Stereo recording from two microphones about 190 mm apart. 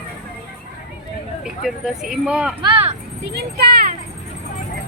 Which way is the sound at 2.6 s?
25° right (ahead or behind).